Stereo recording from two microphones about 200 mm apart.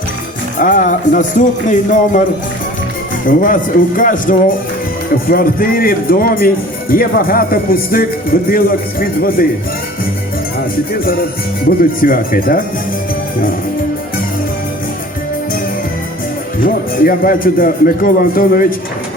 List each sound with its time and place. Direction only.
0.6 s music: 40° left (ahead or behind)
3.2 s speech: 40° left (ahead or behind)
10.9 s speech: 45° left (ahead or behind)
16.6 s speech: 45° left (ahead or behind)